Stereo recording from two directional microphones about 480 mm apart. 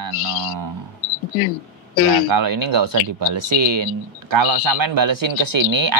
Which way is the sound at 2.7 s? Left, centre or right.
Right.